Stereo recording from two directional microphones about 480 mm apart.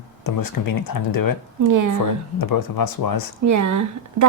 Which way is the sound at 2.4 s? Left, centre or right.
Left.